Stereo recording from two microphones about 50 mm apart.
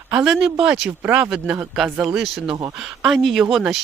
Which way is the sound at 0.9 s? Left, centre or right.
Right.